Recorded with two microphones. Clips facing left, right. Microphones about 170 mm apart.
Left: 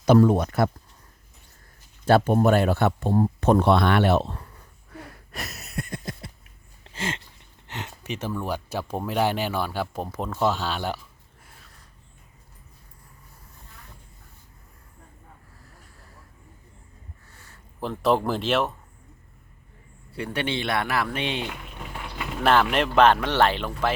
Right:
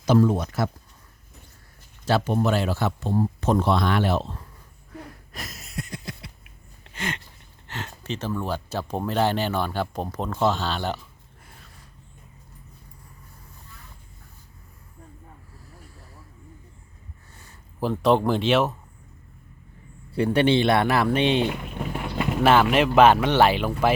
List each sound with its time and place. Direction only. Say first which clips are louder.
0.0 s speech: left 2 dB; 60° left (ahead or behind)
2.0 s speech: left 4 dB; 55° left (ahead or behind)
5.3 s a sound: left 3 dB; 65° left (ahead or behind); by 6.5 s 45° left (ahead or behind)
6.9 s a sound: even; 25° left (ahead or behind)
7.7 s speech: right 1 dB; 15° left (ahead or behind)
11.4 s a sound: right 3 dB; centre (ahead or behind)
17.7 s speech: right 2 dB; centre (ahead or behind)
20.1 s speech: right 9 dB; 30° right (ahead or behind)
22.4 s speech: right 2 dB; 5° right (ahead or behind)